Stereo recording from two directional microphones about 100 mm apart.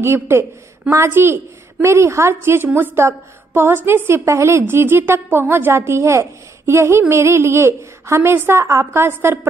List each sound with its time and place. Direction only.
0.0 s a woman's voice: 25° right (ahead or behind)